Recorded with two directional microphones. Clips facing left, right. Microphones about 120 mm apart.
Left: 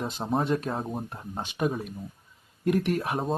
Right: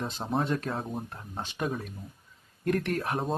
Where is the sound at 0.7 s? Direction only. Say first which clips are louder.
Left 2 dB; 5° left (ahead or behind).